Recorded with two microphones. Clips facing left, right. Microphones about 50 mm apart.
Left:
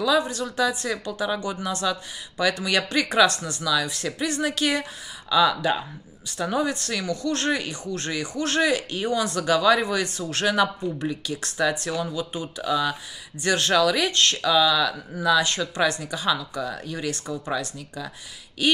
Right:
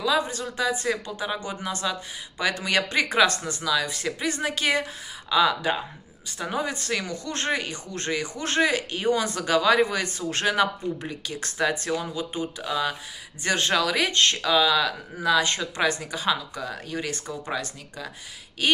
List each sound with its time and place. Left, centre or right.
0.0 s speech: right